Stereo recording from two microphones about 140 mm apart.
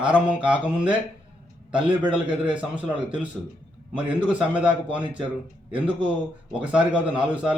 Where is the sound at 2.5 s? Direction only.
35° right (ahead or behind).